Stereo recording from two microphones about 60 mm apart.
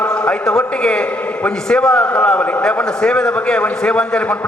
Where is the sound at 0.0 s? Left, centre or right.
Centre.